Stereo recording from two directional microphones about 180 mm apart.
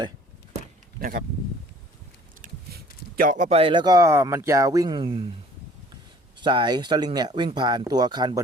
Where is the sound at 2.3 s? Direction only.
50° right (ahead or behind).